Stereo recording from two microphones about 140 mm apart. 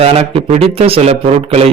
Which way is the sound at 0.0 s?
45° right (ahead or behind).